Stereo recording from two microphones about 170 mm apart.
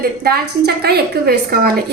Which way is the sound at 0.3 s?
70° right (ahead or behind).